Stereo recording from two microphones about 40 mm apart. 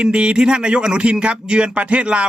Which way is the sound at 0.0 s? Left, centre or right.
Right.